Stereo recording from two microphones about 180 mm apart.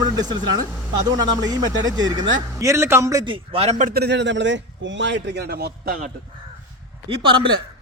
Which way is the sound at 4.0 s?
75° right (ahead or behind).